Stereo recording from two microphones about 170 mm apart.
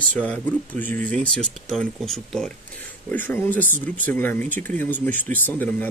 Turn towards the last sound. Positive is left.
turn(degrees=10)  # may be behind; listen again after turning